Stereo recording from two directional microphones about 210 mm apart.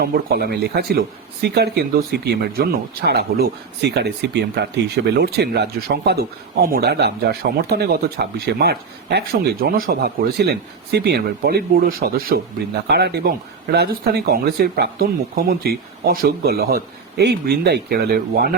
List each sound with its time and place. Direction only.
0.0 s speech: 45° right (ahead or behind)